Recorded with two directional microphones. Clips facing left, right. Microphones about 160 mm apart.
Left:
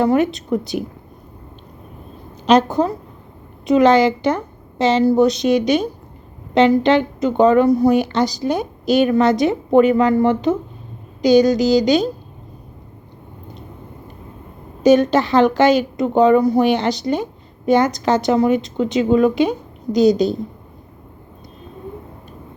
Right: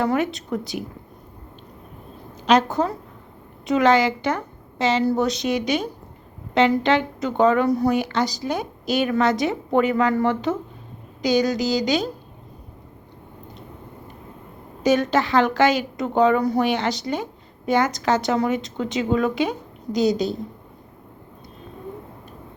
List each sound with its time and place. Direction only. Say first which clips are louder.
0.0 s speech: left 6 dB; 20° left (ahead or behind)
2.5 s a woman's voice: left 4 dB; 20° left (ahead or behind)
14.8 s speech: left 6 dB; 20° left (ahead or behind)